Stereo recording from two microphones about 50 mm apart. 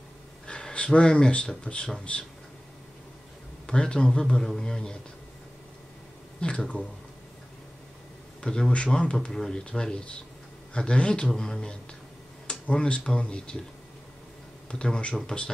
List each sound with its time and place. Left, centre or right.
0.5 s speech: centre
3.6 s speech: centre
6.4 s speech: left
8.4 s speech: centre
14.7 s speech: centre